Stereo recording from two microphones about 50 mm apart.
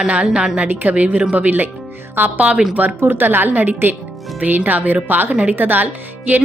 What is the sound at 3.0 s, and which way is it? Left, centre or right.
Speech, right.